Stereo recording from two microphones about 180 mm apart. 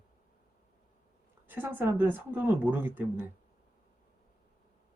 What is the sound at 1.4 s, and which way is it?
A woman's voice, 10° right (ahead or behind).